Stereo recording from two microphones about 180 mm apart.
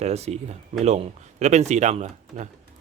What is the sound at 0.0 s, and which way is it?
Speech, 35° right (ahead or behind).